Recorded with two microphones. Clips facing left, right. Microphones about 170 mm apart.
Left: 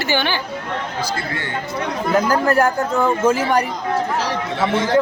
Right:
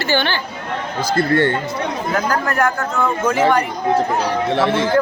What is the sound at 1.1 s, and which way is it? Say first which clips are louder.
Speech: right 10 dB; 60° right (ahead or behind).